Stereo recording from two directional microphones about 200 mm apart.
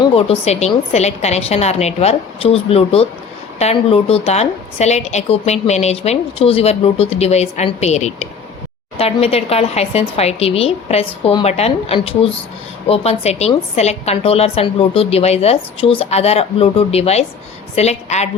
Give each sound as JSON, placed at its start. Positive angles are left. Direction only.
{"t": 0.2, "sound": "a woman's voice", "side_deg": 30}